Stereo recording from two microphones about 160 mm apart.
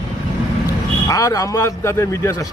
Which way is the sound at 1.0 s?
20° left (ahead or behind).